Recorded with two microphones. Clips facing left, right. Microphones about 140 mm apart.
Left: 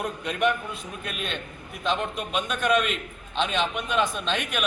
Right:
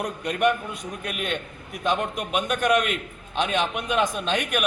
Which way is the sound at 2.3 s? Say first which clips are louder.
Right 5 dB; 10° right (ahead or behind).